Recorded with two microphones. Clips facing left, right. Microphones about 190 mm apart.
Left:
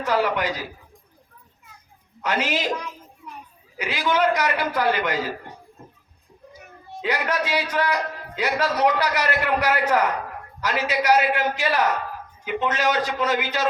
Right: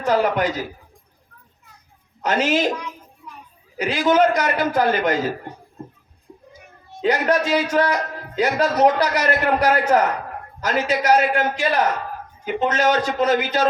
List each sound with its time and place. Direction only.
0.0 s a man's voice: 45° right (ahead or behind)
2.2 s a man's voice: 45° right (ahead or behind)
3.8 s a man's voice: 45° right (ahead or behind)
7.0 s a man's voice: 45° right (ahead or behind)